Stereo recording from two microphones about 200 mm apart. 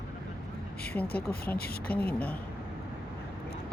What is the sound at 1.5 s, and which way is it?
Speech, 50° left (ahead or behind).